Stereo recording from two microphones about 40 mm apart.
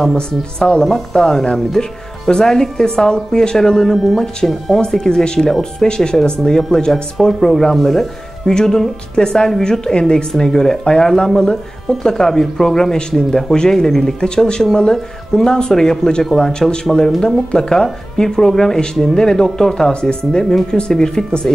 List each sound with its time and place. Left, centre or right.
0.1 s speech: centre
6.9 s speech: centre